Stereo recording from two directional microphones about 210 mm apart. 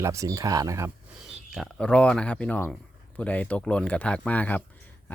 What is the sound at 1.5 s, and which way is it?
Speech, centre (ahead or behind).